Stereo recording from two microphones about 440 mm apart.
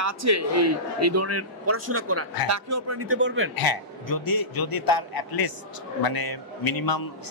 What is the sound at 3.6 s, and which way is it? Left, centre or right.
A man's voice, left.